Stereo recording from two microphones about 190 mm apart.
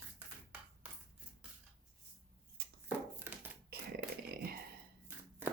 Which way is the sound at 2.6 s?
55° right (ahead or behind).